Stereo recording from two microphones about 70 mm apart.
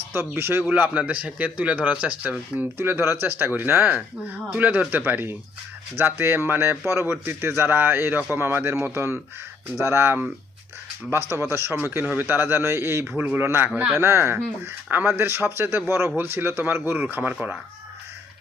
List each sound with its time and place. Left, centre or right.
0.1 s speech: right
0.7 s speech: right
2.6 s speech: right